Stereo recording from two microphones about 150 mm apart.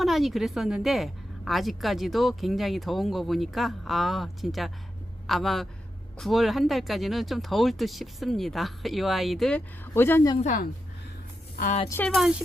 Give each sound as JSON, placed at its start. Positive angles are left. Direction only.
{"t": 0.0, "sound": "a woman's voice", "side_deg": 0}
{"t": 10.4, "sound": "a woman's voice", "side_deg": 65}
{"t": 11.9, "sound": "speech", "side_deg": 15}